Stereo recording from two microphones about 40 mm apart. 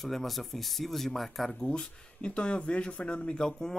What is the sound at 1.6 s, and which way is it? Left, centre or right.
Speech, left.